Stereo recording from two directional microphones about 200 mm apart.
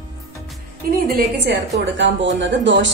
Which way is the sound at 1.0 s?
50° right (ahead or behind).